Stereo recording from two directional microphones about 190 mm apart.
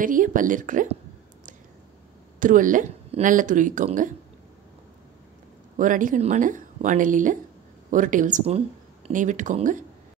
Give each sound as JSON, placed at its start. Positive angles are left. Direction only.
{"t": 0.0, "sound": "speech", "side_deg": -45}
{"t": 2.4, "sound": "speech", "side_deg": -45}
{"t": 5.8, "sound": "speech", "side_deg": -45}